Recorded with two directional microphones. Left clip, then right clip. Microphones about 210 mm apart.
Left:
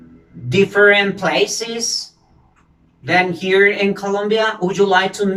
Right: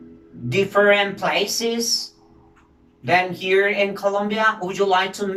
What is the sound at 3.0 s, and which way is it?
Speech, 5° right (ahead or behind).